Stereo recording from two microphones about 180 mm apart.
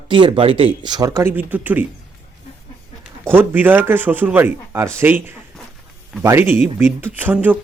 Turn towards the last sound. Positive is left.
turn(degrees=-10)  # may be behind; listen again after turning